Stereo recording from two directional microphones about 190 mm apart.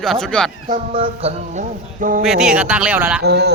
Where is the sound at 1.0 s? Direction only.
30° right (ahead or behind).